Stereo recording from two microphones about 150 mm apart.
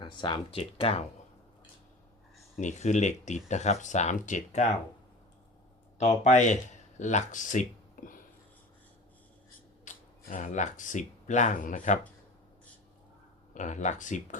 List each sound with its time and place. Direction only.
0.0 s speech: 30° left (ahead or behind)
0.6 s speech: 40° left (ahead or behind)
2.6 s speech: 50° left (ahead or behind)
6.0 s speech: 50° left (ahead or behind)
9.8 s speech: 55° left (ahead or behind)
13.5 s speech: 55° left (ahead or behind)